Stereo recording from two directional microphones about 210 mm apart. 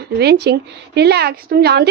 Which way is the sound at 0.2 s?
50° right (ahead or behind).